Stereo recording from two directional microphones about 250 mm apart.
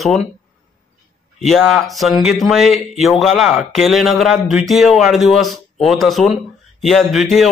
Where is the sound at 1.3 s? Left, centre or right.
Centre.